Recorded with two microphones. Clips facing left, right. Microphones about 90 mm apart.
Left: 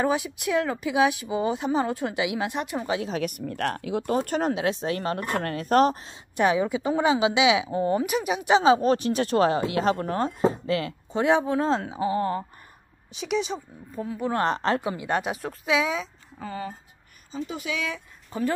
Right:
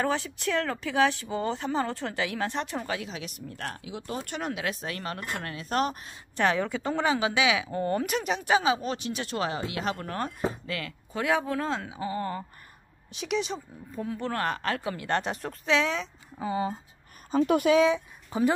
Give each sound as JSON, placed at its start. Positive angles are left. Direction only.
{"t": 0.0, "sound": "speech", "side_deg": 10}
{"t": 3.0, "sound": "speech", "side_deg": 45}
{"t": 4.2, "sound": "speech", "side_deg": 40}
{"t": 6.3, "sound": "speech", "side_deg": 15}
{"t": 8.5, "sound": "speech", "side_deg": 25}
{"t": 8.7, "sound": "speech", "side_deg": 40}
{"t": 11.7, "sound": "speech", "side_deg": 30}
{"t": 12.0, "sound": "speech", "side_deg": 20}
{"t": 13.1, "sound": "speech", "side_deg": 0}
{"t": 14.3, "sound": "speech", "side_deg": 25}
{"t": 16.3, "sound": "speech", "side_deg": -15}
{"t": 17.3, "sound": "a woman's voice", "side_deg": -60}
{"t": 17.8, "sound": "speech", "side_deg": -20}